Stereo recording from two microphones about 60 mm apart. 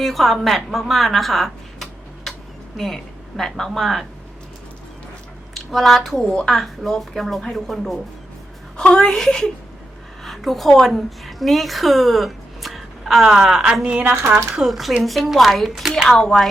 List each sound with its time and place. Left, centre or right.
0.0 s a woman's voice: centre
5.5 s a woman's voice: centre
14.0 s speech: right
14.7 s a woman's voice: centre